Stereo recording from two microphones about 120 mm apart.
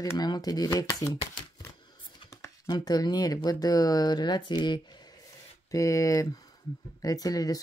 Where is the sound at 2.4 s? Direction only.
35° left (ahead or behind).